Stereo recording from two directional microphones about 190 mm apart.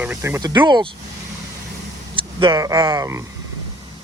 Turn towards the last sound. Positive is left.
turn(degrees=-15)  # may be behind; listen again after turning